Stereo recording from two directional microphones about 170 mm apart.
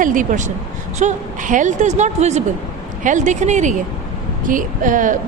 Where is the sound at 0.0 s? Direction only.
50° right (ahead or behind).